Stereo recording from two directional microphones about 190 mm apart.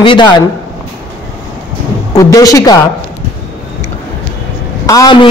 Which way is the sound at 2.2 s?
20° left (ahead or behind).